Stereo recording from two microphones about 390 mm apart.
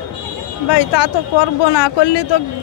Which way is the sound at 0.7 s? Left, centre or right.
Left.